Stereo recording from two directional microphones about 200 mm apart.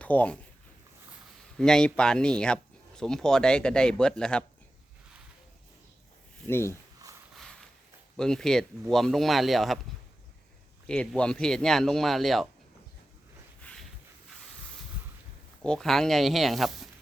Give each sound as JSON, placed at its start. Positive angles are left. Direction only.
{"t": 0.0, "sound": "speech", "side_deg": 5}
{"t": 1.5, "sound": "speech", "side_deg": 5}
{"t": 6.5, "sound": "speech", "side_deg": 10}
{"t": 7.3, "sound": "a sound", "side_deg": 0}
{"t": 8.1, "sound": "speech", "side_deg": 5}
{"t": 10.8, "sound": "speech", "side_deg": 5}
{"t": 13.6, "sound": "a sound", "side_deg": 5}
{"t": 15.6, "sound": "speech", "side_deg": 5}